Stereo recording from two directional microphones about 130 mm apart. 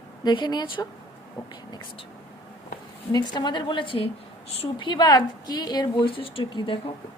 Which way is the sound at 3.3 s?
35° left (ahead or behind).